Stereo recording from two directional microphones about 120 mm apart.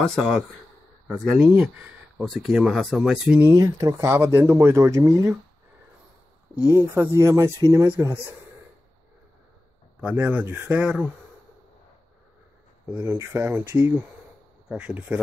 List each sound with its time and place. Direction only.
1.2 s a man's voice: 5° right (ahead or behind)
3.3 s speech: 25° right (ahead or behind)
6.7 s speech: 20° right (ahead or behind)
9.9 s a man's voice: 15° right (ahead or behind)
12.9 s a man's voice: 20° right (ahead or behind)